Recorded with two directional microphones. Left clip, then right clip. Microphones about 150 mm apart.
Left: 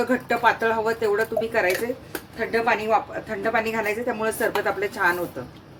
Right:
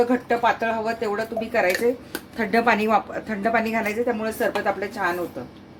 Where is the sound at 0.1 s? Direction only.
15° right (ahead or behind).